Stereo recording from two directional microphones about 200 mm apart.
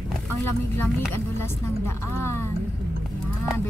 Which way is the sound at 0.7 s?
10° left (ahead or behind).